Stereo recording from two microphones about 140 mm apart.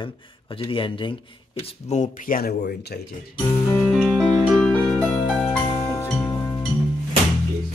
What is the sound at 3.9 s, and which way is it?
Music, centre (ahead or behind).